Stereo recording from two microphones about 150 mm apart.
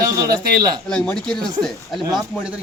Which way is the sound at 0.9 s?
5° left (ahead or behind).